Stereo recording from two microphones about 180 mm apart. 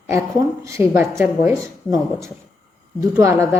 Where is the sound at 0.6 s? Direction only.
15° right (ahead or behind).